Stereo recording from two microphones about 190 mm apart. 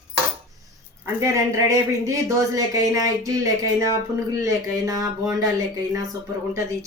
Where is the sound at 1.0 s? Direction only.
15° right (ahead or behind).